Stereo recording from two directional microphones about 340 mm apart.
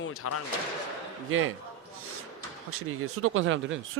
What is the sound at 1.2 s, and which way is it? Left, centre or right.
Speech, right.